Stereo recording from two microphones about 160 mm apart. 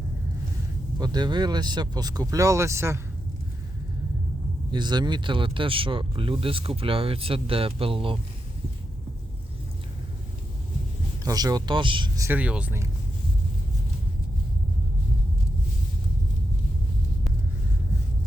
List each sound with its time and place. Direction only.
0.9 s speech: 25° right (ahead or behind)
4.7 s speech: 25° right (ahead or behind)
11.3 s speech: 25° right (ahead or behind)
12.4 s speech: 10° right (ahead or behind)